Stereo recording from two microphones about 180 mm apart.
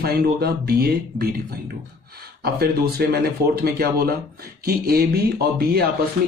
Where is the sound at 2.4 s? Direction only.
60° right (ahead or behind).